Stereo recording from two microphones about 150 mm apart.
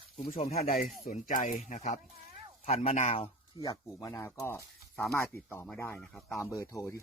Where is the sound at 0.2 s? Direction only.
55° left (ahead or behind).